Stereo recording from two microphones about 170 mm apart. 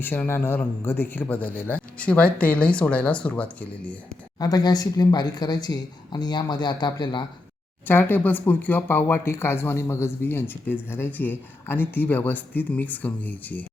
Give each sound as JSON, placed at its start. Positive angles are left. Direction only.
{"t": 0.0, "sound": "speech", "side_deg": 10}
{"t": 4.4, "sound": "speech", "side_deg": 20}
{"t": 7.9, "sound": "speech", "side_deg": 10}